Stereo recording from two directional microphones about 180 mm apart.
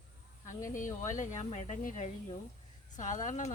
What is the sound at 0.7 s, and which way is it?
Speech, 45° left (ahead or behind).